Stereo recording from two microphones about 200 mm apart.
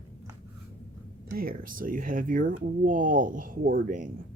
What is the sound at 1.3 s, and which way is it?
Speech, 45° right (ahead or behind).